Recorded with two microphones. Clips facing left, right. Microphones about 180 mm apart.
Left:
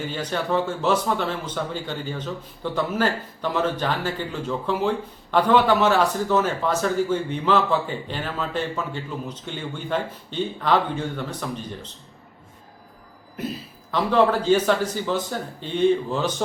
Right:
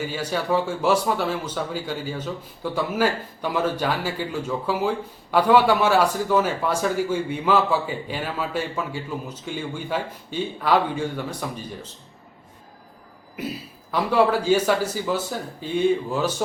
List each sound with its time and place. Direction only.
0.0 s speech: 10° right (ahead or behind)
13.9 s speech: 10° right (ahead or behind)